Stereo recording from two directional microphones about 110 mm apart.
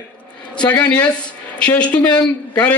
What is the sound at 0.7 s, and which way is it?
A man's voice, 15° left (ahead or behind).